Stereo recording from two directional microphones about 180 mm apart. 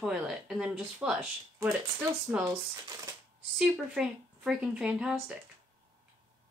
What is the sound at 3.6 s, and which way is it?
Speech, 5° right (ahead or behind).